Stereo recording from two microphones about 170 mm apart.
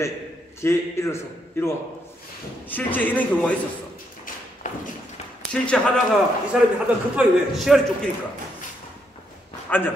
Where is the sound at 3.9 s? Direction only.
55° left (ahead or behind).